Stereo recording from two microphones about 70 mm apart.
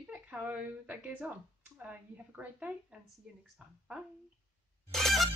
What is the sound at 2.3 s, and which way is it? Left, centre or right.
Speech, right.